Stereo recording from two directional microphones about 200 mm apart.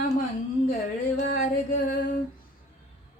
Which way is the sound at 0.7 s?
40° left (ahead or behind).